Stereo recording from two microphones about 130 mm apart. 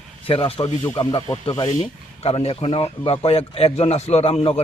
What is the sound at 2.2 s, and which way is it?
A man's voice, 50° left (ahead or behind).